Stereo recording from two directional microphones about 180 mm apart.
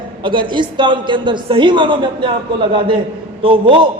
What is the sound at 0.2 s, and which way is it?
A man's voice, 25° right (ahead or behind).